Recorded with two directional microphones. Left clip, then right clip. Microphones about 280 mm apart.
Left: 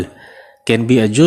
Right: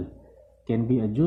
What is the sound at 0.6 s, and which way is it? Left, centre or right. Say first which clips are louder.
Speech: left 13 dB; left.